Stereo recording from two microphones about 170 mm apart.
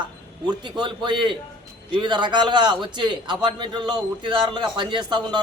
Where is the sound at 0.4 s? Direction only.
25° right (ahead or behind).